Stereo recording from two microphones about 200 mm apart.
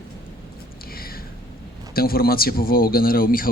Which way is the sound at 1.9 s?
50° left (ahead or behind).